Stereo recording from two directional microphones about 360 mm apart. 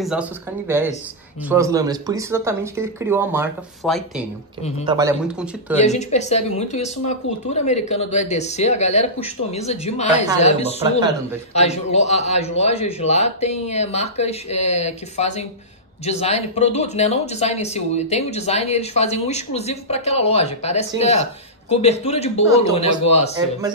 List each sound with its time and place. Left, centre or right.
0.0 s speech: centre
5.9 s speech: centre